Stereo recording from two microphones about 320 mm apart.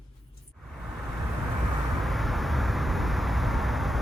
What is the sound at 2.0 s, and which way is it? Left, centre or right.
Vehicle, centre.